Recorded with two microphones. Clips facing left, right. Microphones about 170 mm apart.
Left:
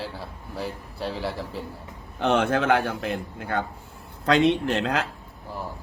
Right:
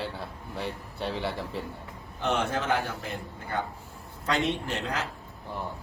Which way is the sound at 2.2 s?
80° left.